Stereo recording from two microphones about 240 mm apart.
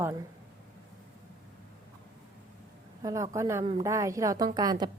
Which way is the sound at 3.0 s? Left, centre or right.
Centre.